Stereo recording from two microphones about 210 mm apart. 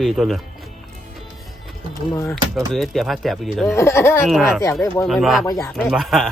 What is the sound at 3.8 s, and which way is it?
Speech, 15° left (ahead or behind).